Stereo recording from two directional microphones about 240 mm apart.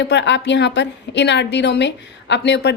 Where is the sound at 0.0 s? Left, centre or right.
Left.